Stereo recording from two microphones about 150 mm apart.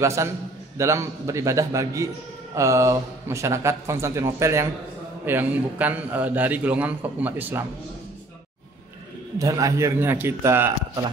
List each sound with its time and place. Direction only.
0.0 s a man's voice: 20° right (ahead or behind)
9.4 s speech: 20° right (ahead or behind)